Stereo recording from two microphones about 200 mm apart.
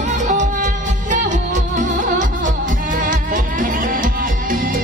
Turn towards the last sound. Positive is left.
turn(degrees=-45)  # may be behind; listen again after turning